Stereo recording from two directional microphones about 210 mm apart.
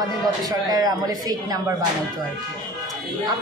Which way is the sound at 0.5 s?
15° right (ahead or behind).